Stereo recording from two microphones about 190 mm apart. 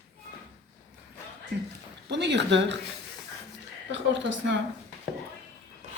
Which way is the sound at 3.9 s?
70° right (ahead or behind).